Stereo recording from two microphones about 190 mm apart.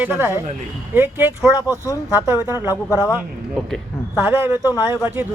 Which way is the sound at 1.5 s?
20° left (ahead or behind).